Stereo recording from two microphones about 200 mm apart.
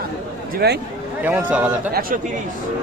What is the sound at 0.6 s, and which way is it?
Speech, 55° right (ahead or behind).